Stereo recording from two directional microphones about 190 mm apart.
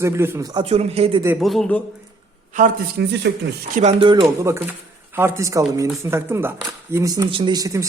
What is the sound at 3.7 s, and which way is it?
Speech, 35° right (ahead or behind).